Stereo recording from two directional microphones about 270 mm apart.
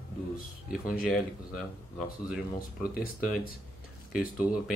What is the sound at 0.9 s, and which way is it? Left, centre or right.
Speech, centre.